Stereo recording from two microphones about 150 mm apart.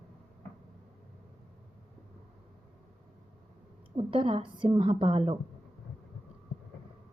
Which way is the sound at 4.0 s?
40° right (ahead or behind).